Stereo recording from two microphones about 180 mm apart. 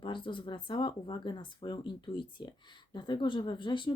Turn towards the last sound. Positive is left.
turn(degrees=25)  # may be behind; listen again after turning